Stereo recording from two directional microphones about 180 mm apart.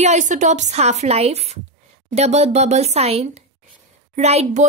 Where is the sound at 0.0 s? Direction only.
40° right (ahead or behind).